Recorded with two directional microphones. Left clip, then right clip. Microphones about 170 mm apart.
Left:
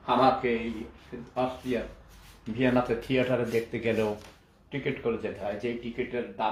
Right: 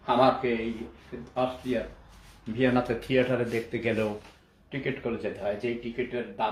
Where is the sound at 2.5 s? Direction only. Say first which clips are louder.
Even; 20° right (ahead or behind).